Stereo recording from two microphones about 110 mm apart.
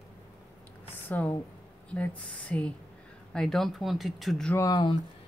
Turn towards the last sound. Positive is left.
turn(degrees=45)  # may be behind; listen again after turning